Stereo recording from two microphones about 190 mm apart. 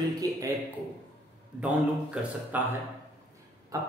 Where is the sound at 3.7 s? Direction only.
15° right (ahead or behind).